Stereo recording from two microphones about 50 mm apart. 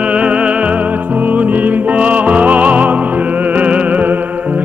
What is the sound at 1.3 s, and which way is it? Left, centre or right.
Music, right.